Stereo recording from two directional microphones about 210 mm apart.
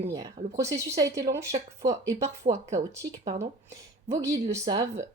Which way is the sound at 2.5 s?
35° right (ahead or behind).